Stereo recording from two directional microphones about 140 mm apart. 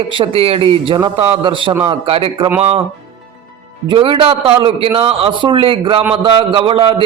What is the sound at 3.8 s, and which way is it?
Speech, 40° right (ahead or behind).